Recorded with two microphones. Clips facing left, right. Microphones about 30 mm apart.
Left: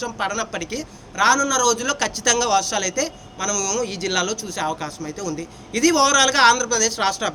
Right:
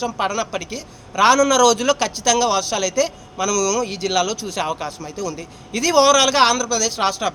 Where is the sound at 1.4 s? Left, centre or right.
Right.